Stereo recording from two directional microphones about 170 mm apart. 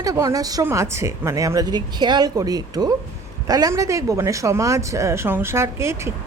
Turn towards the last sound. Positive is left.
turn(degrees=-15)  # may be behind; listen again after turning